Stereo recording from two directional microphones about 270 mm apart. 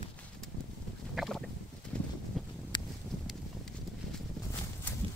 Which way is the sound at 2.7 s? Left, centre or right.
Centre.